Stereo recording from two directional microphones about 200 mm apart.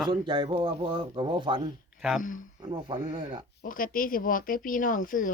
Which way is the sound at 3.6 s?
45° left (ahead or behind).